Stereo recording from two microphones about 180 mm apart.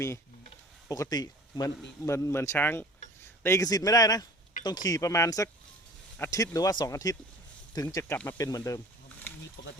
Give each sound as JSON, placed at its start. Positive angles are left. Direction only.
{"t": 0.9, "sound": "speech", "side_deg": 20}
{"t": 9.6, "sound": "speech", "side_deg": 70}